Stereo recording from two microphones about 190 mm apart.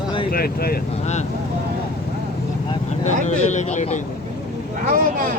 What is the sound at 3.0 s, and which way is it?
Speech, 35° left (ahead or behind).